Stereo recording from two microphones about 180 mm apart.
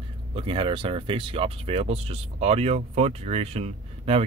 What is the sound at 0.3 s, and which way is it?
Speech, 30° right (ahead or behind).